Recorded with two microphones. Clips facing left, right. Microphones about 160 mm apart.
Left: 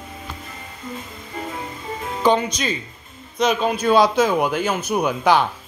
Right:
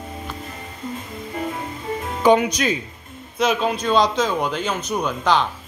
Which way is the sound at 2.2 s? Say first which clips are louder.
Right 3 dB; 10° right (ahead or behind).